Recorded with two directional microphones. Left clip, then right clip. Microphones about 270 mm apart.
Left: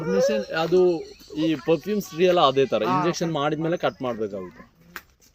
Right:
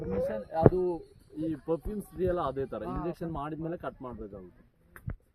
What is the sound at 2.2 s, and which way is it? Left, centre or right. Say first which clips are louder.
Speech: left 13 dB; right.